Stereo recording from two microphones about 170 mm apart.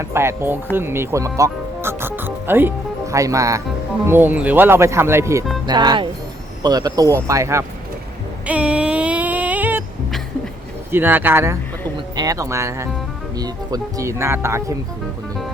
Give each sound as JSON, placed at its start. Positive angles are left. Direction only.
{"t": 0.0, "sound": "speech", "side_deg": -15}
{"t": 8.4, "sound": "a sound", "side_deg": -5}
{"t": 10.9, "sound": "speech", "side_deg": -10}